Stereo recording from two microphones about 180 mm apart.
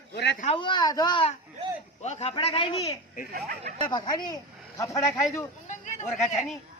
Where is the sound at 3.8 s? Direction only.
25° left (ahead or behind).